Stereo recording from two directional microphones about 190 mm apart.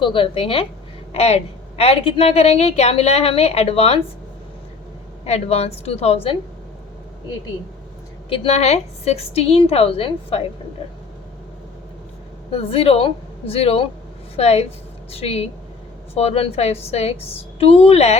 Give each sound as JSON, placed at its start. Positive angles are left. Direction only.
{"t": 0.0, "sound": "a woman's voice", "side_deg": 25}
{"t": 5.2, "sound": "a woman's voice", "side_deg": 35}
{"t": 8.3, "sound": "a woman's voice", "side_deg": 35}
{"t": 12.5, "sound": "a woman's voice", "side_deg": 30}